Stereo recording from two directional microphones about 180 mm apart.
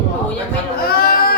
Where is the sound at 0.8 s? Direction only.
55° left (ahead or behind).